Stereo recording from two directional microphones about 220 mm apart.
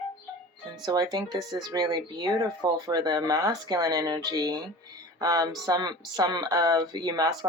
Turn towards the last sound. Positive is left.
turn(degrees=-15)  # may be behind; listen again after turning